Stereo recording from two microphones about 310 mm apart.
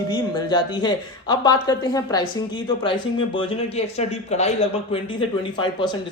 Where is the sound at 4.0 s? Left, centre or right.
Left.